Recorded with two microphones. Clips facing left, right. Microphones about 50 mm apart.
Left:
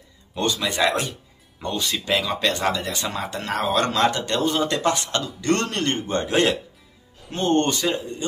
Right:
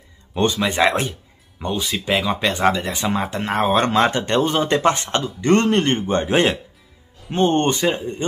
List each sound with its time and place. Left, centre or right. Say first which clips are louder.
0.3 s speech: right 5 dB; right
1.6 s speech: right 2 dB; centre